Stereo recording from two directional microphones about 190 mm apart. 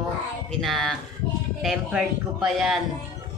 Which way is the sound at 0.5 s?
Centre (ahead or behind).